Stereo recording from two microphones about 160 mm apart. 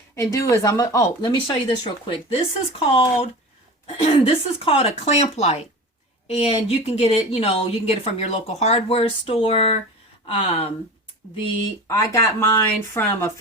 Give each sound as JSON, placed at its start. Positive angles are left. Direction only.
{"t": 0.2, "sound": "speech", "side_deg": 20}
{"t": 1.8, "sound": "a woman's voice", "side_deg": 40}
{"t": 11.9, "sound": "speech", "side_deg": 20}